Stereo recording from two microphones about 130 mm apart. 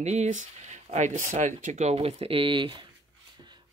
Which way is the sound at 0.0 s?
60° right (ahead or behind).